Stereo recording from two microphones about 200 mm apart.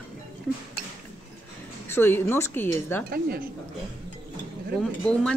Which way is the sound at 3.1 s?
50° right (ahead or behind).